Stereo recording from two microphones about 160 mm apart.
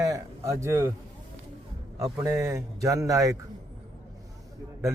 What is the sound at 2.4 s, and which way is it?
Speech, 20° right (ahead or behind).